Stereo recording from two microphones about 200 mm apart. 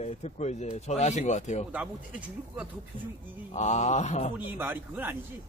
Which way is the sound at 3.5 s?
35° left (ahead or behind).